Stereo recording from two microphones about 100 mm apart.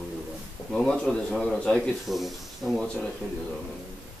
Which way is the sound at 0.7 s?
5° left (ahead or behind).